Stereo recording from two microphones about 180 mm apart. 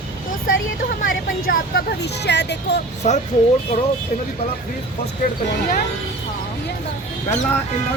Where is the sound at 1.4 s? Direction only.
55° left (ahead or behind).